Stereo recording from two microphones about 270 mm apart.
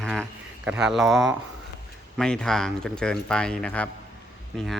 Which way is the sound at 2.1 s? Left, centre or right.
Centre.